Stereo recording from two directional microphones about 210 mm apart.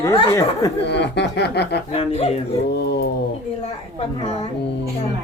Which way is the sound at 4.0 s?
30° left (ahead or behind).